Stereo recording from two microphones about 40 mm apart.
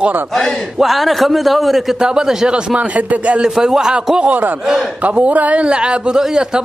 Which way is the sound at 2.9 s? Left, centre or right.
Right.